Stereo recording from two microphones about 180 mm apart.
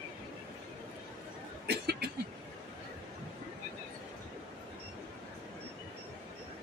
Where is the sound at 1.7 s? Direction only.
65° right (ahead or behind).